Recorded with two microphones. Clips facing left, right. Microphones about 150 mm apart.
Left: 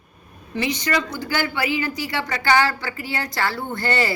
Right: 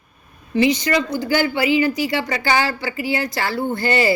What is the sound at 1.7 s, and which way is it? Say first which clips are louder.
A woman's voice: right 7 dB; 15° right (ahead or behind).